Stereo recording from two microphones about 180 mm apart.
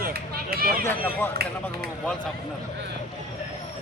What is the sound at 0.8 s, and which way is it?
Speech, 10° left (ahead or behind).